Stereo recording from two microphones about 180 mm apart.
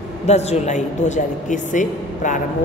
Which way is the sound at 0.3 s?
40° left (ahead or behind).